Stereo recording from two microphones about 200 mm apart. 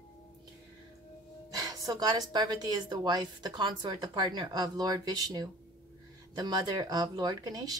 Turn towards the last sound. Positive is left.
turn(degrees=-20)  # may be behind; listen again after turning